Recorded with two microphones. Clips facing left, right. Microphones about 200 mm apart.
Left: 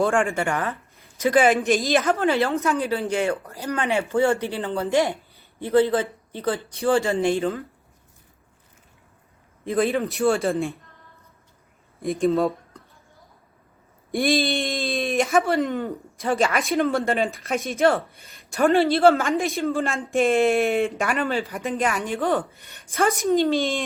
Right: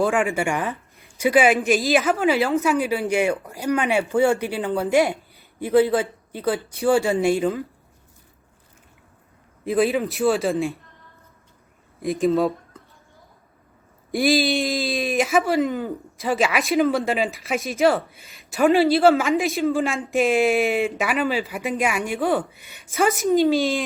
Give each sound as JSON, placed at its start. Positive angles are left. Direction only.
{"t": 0.0, "sound": "a woman's voice", "side_deg": -5}
{"t": 9.6, "sound": "speech", "side_deg": 0}
{"t": 12.0, "sound": "speech", "side_deg": 0}
{"t": 14.1, "sound": "speech", "side_deg": 0}